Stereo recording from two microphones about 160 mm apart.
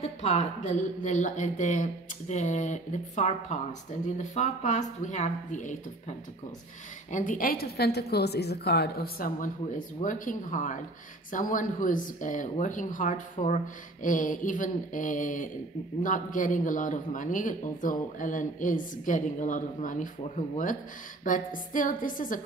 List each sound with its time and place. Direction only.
0.0 s a woman's voice: 45° left (ahead or behind)